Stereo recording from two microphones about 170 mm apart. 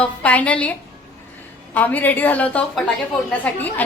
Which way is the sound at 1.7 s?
10° left (ahead or behind).